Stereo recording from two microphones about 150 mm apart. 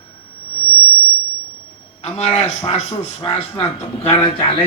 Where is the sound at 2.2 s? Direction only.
45° left (ahead or behind).